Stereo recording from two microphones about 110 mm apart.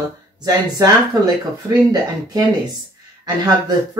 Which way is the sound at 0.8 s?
30° right (ahead or behind).